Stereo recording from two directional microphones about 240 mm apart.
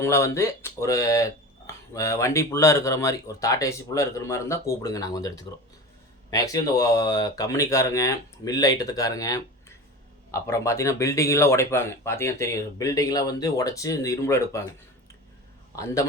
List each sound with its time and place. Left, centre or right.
0.0 s speech: centre
15.7 s a man's voice: centre